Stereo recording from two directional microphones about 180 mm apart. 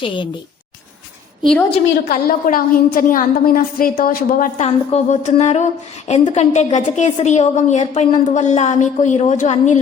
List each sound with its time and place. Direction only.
1.4 s a woman's voice: 5° left (ahead or behind)
2.0 s a woman's voice: 55° left (ahead or behind)
4.6 s a woman's voice: 35° left (ahead or behind)